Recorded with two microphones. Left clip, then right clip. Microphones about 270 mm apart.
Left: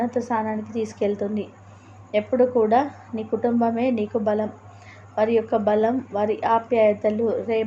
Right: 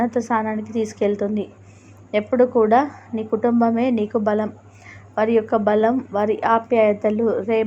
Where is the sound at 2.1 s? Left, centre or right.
Centre.